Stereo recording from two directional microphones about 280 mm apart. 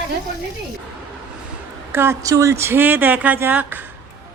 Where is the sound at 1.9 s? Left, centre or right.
Centre.